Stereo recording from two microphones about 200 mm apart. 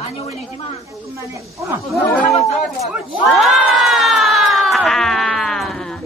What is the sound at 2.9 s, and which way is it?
Crowd, centre (ahead or behind).